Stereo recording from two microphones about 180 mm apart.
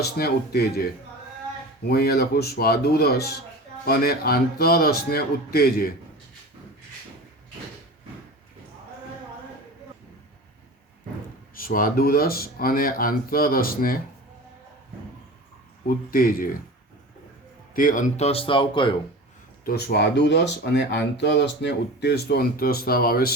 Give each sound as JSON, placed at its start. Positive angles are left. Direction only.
{"t": 0.0, "sound": "speech", "side_deg": 60}
{"t": 1.9, "sound": "speech", "side_deg": 60}
{"t": 11.5, "sound": "speech", "side_deg": 50}
{"t": 16.1, "sound": "speech", "side_deg": 50}
{"t": 17.7, "sound": "speech", "side_deg": 50}
{"t": 19.6, "sound": "speech", "side_deg": 60}